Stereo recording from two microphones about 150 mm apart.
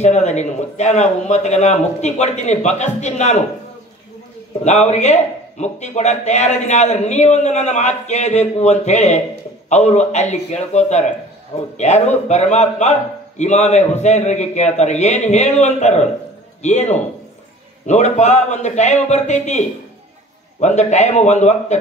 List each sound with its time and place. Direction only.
0.0 s a man's voice: 50° left (ahead or behind)
4.6 s a man's voice: 50° left (ahead or behind)
20.6 s a man's voice: 50° left (ahead or behind)